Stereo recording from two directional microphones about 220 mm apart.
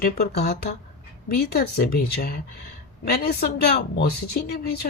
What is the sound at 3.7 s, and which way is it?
Speech, 45° left (ahead or behind).